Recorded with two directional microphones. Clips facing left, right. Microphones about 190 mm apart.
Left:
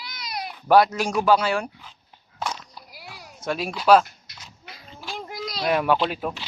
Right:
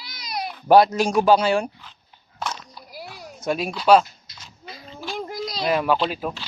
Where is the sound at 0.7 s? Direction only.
25° right (ahead or behind).